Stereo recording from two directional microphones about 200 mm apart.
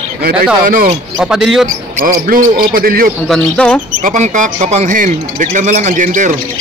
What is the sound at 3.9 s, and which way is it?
Speech, 40° right (ahead or behind).